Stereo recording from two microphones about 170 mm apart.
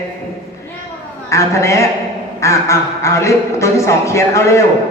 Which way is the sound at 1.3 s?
15° left (ahead or behind).